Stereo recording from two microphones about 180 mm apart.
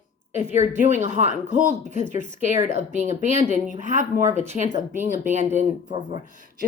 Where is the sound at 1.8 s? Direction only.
45° left (ahead or behind).